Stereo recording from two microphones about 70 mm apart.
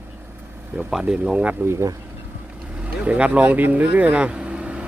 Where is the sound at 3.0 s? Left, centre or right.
Centre.